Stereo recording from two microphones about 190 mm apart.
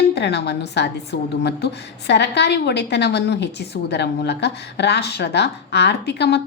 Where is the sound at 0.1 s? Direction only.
65° left (ahead or behind).